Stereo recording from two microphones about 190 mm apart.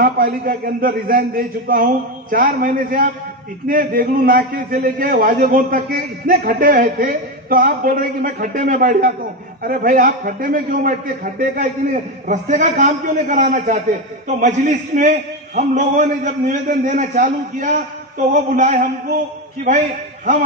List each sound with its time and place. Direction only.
0.0 s a man's voice: 50° right (ahead or behind)